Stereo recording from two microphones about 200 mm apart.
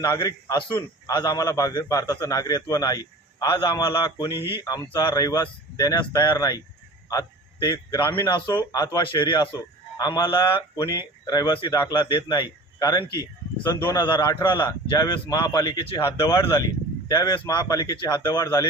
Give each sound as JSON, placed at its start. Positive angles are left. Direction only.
{"t": 0.0, "sound": "a man's voice", "side_deg": 20}
{"t": 4.3, "sound": "speech", "side_deg": -10}
{"t": 4.6, "sound": "a man's voice", "side_deg": 20}
{"t": 17.1, "sound": "a man's voice", "side_deg": 20}